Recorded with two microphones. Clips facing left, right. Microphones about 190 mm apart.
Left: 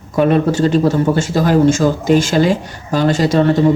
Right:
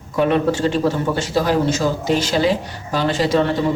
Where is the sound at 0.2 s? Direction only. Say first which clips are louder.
Left 4 dB; 45° left (ahead or behind).